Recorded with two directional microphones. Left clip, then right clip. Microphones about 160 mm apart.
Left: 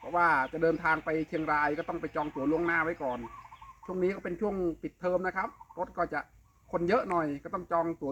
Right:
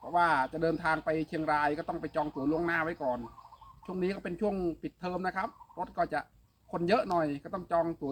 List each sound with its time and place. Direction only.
0.1 s speech: 25° right (ahead or behind)